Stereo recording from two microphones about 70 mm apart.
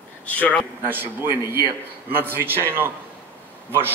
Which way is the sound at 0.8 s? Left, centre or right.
Right.